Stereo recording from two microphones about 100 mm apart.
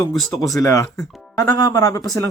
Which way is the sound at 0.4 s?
35° left (ahead or behind).